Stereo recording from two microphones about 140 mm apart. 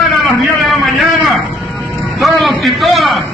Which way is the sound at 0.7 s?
Centre (ahead or behind).